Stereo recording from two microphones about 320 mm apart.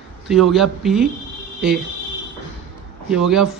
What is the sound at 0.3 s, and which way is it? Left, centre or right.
Speech, centre.